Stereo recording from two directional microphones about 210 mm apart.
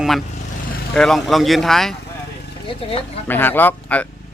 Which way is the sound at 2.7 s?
25° left (ahead or behind).